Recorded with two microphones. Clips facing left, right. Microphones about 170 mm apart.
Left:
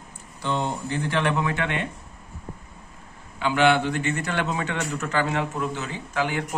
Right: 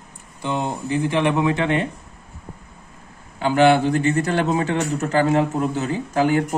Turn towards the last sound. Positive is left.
turn(degrees=-40)  # may be behind; listen again after turning